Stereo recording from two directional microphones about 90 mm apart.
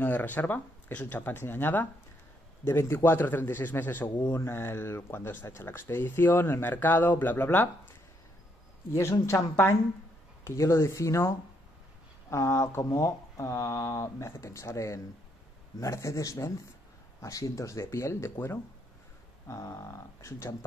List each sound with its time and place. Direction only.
0.0 s speech: 20° left (ahead or behind)
9.2 s speech: 30° left (ahead or behind)
19.4 s speech: 35° left (ahead or behind)